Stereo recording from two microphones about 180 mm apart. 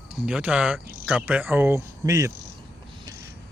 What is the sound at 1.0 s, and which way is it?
Cricket, 5° right (ahead or behind).